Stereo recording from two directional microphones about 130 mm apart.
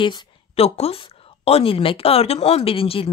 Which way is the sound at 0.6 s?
50° left (ahead or behind).